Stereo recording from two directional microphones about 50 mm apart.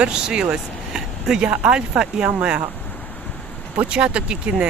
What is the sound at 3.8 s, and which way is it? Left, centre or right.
Speech, right.